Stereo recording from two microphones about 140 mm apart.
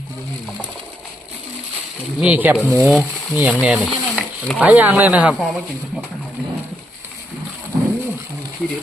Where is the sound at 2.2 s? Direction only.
10° right (ahead or behind).